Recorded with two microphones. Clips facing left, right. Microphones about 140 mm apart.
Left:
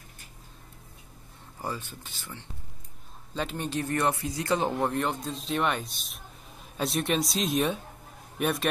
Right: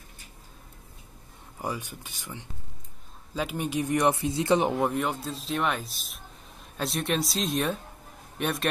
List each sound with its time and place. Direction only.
1.6 s speech: 15° right (ahead or behind)
4.7 s speech: 5° right (ahead or behind)